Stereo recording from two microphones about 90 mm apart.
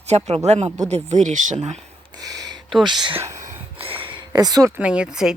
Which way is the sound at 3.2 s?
35° right (ahead or behind).